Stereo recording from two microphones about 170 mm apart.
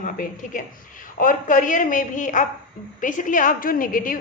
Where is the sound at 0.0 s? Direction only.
50° left (ahead or behind).